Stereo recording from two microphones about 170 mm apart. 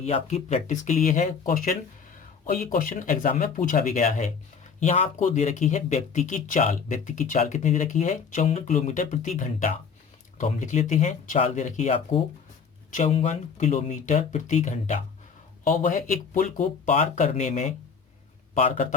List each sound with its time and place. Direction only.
0.0 s speech: 40° left (ahead or behind)